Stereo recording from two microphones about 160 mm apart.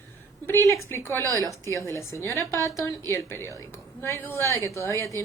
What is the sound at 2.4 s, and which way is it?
Speech, 20° right (ahead or behind).